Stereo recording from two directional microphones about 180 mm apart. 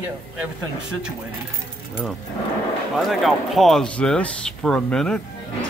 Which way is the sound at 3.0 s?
Centre (ahead or behind).